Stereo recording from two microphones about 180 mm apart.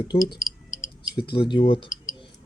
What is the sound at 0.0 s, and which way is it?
Speech, 25° left (ahead or behind).